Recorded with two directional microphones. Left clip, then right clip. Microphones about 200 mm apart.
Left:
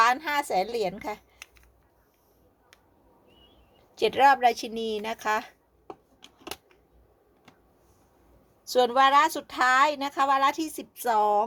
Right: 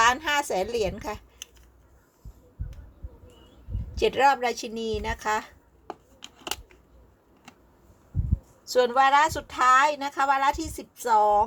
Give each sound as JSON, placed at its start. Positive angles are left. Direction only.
{"t": 0.0, "sound": "a woman's voice", "side_deg": 10}
{"t": 3.9, "sound": "a woman's voice", "side_deg": 20}
{"t": 5.9, "sound": "a sound", "side_deg": 0}
{"t": 8.9, "sound": "a woman's voice", "side_deg": 30}